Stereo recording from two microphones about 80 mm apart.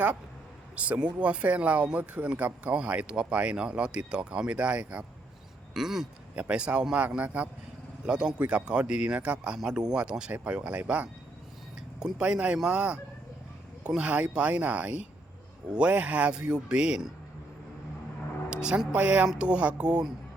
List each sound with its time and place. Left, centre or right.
0.8 s speech: centre
5.7 s speech: centre
18.5 s speech: centre